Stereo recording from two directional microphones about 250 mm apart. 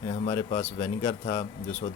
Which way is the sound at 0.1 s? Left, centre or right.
Centre.